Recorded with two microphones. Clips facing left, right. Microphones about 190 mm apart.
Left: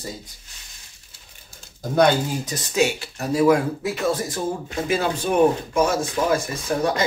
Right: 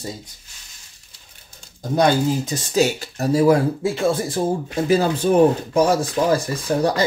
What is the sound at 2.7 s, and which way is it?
Speech, 35° right (ahead or behind).